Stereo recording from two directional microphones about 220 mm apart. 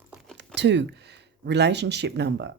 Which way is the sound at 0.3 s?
50° right (ahead or behind).